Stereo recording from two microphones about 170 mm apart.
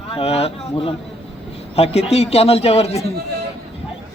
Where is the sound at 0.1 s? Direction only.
35° left (ahead or behind).